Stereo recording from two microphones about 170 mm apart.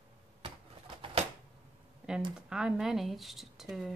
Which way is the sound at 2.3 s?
5° right (ahead or behind).